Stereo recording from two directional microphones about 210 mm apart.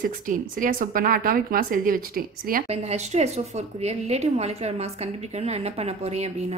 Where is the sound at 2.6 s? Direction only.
30° right (ahead or behind).